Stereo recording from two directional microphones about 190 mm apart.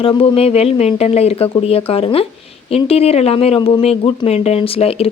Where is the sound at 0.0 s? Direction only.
25° left (ahead or behind).